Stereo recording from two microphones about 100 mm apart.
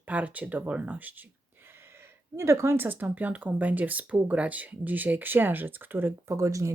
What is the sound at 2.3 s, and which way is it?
Speech, 30° right (ahead or behind).